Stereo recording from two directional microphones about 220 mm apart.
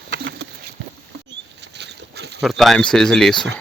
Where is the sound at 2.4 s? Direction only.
Centre (ahead or behind).